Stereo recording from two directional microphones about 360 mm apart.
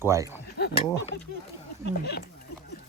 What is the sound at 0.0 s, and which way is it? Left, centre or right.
Speech, centre.